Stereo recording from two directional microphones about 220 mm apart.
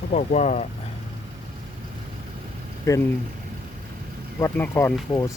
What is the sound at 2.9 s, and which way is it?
Speech, 15° left (ahead or behind).